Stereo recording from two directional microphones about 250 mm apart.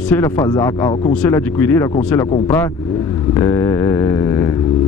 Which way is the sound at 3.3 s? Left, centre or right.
Centre.